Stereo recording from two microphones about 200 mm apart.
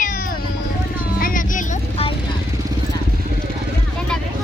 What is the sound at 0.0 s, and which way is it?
Cat, 40° left (ahead or behind).